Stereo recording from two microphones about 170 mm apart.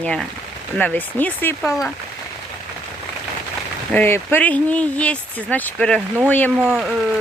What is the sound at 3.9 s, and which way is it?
Speech, 10° left (ahead or behind).